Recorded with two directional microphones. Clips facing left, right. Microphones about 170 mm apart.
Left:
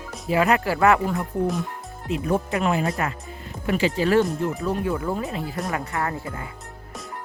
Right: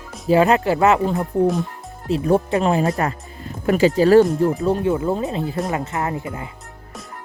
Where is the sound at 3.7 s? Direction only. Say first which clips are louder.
Right 7 dB; 40° right (ahead or behind); by 6.5 s 20° right (ahead or behind).